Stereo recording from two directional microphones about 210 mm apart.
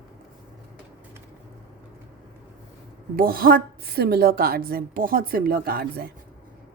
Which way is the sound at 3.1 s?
45° right (ahead or behind).